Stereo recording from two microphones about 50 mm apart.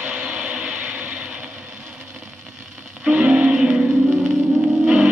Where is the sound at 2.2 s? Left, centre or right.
Centre.